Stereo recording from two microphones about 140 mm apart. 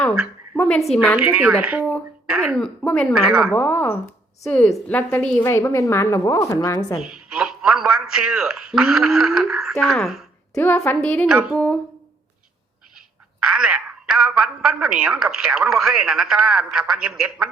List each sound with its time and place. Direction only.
0.5 s a sound: 15° left (ahead or behind)
0.9 s a woman's voice: 10° right (ahead or behind)
3.5 s a woman's voice: 10° left (ahead or behind); by 7.0 s 25° left (ahead or behind)
7.1 s speech: 5° right (ahead or behind)
9.8 s a sound: centre (ahead or behind)
10.6 s speech: 15° left (ahead or behind)
11.3 s a woman's voice: 5° right (ahead or behind)
11.5 s speech: 10° left (ahead or behind)
13.4 s a woman's voice: 5° right (ahead or behind)